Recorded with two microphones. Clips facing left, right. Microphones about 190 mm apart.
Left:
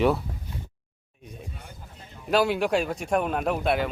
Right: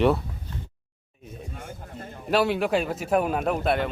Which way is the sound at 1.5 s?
45° right (ahead or behind).